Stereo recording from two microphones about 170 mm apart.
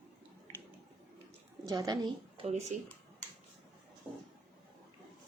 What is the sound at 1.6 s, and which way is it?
Speech, 20° right (ahead or behind).